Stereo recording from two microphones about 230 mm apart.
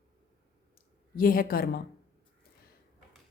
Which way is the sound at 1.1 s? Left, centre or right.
Left.